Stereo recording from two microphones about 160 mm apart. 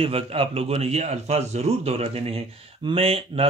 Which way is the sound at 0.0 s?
35° right (ahead or behind).